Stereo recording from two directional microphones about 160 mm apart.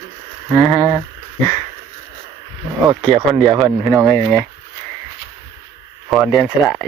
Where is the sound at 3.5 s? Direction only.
20° right (ahead or behind).